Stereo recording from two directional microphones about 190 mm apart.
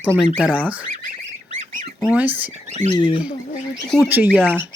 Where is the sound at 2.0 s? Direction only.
10° right (ahead or behind).